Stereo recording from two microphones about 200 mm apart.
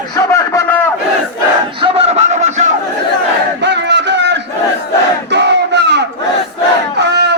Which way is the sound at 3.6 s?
60° right (ahead or behind).